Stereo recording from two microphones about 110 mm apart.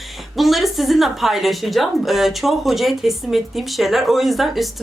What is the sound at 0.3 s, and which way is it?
A woman's voice, centre (ahead or behind).